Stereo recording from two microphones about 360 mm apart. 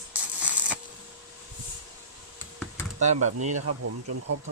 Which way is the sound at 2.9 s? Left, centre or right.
Centre.